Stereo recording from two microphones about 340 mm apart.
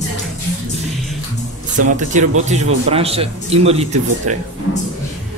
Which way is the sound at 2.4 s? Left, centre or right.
Centre.